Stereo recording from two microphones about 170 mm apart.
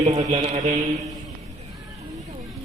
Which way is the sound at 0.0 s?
40° right (ahead or behind).